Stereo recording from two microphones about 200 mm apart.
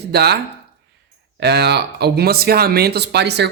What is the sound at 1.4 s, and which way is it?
Speech, 55° right (ahead or behind).